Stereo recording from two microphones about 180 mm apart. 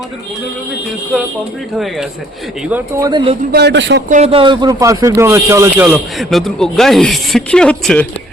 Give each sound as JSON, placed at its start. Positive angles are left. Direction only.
{"t": 1.1, "sound": "speech", "side_deg": 0}
{"t": 2.6, "sound": "speech", "side_deg": -10}
{"t": 3.5, "sound": "a man's voice", "side_deg": -70}
{"t": 4.1, "sound": "speech", "side_deg": -35}